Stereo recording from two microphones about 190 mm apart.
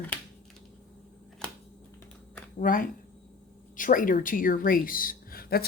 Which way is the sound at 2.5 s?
45° left (ahead or behind).